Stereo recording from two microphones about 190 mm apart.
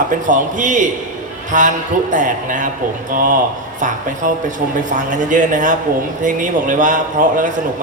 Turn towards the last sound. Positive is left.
turn(degrees=-45)  # may be behind; listen again after turning